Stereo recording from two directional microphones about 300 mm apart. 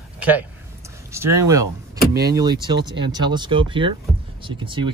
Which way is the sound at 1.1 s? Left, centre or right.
Centre.